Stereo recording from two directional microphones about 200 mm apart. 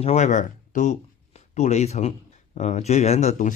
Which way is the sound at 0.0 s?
35° left (ahead or behind).